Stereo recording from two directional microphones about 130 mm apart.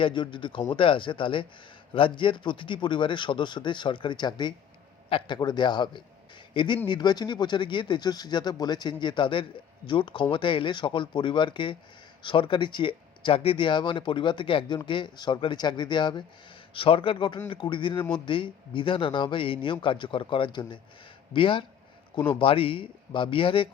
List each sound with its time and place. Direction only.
0.0 s a man's voice: 40° left (ahead or behind)